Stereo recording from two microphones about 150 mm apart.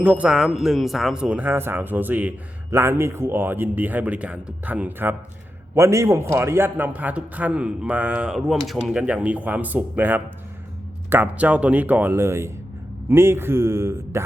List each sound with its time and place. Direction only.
0.0 s a man's voice: 10° right (ahead or behind)